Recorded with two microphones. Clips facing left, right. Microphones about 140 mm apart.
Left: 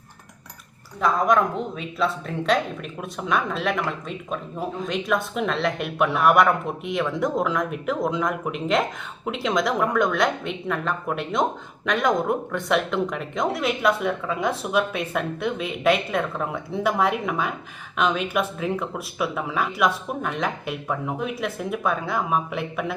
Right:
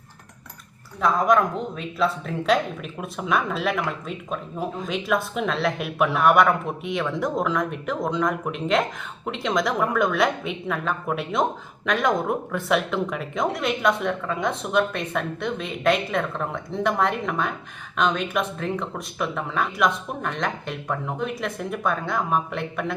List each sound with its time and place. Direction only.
1.0 s speech: centre (ahead or behind)